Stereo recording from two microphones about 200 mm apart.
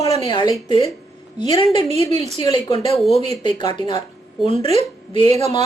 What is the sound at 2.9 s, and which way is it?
Speech, centre (ahead or behind).